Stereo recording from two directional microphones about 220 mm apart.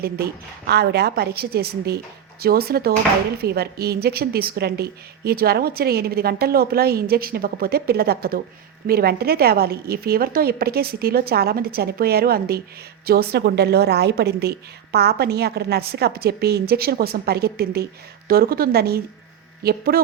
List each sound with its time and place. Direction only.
0.7 s speech: 45° right (ahead or behind)